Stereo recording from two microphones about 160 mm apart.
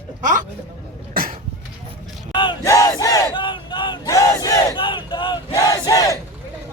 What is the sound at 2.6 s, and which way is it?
Battle cry, 20° left (ahead or behind).